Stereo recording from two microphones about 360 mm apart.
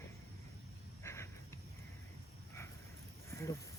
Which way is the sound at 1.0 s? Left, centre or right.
Centre.